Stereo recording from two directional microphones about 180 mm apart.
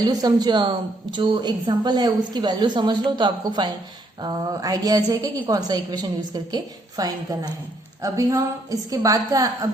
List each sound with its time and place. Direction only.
0.0 s a woman's voice: 20° right (ahead or behind)